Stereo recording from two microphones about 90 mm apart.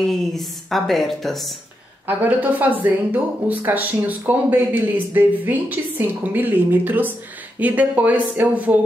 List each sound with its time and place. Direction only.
0.0 s a woman's voice: centre (ahead or behind)
2.0 s speech: 20° right (ahead or behind)